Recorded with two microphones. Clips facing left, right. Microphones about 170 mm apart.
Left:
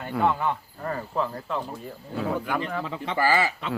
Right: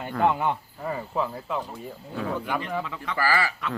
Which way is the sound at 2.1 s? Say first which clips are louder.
Left 2 dB; 5° left (ahead or behind).